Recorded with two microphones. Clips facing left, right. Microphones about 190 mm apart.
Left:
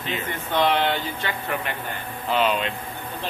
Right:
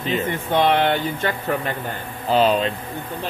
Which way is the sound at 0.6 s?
55° right (ahead or behind).